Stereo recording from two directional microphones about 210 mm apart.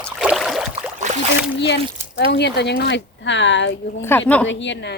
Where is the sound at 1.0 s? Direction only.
35° right (ahead or behind).